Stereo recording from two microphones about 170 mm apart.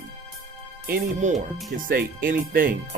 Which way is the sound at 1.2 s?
45° right (ahead or behind).